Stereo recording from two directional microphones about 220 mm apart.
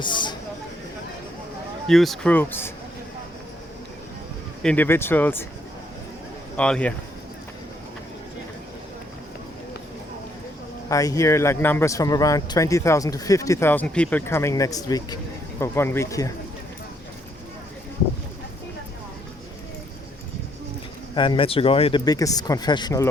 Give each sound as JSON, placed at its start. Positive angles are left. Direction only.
{"t": 0.0, "sound": "speech", "side_deg": 20}
{"t": 1.9, "sound": "speech", "side_deg": 0}
{"t": 4.6, "sound": "speech", "side_deg": 5}
{"t": 6.6, "sound": "speech", "side_deg": 5}
{"t": 10.8, "sound": "speech", "side_deg": 15}
{"t": 21.2, "sound": "speech", "side_deg": 25}